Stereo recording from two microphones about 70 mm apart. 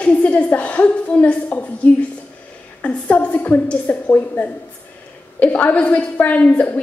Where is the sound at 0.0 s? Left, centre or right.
Centre.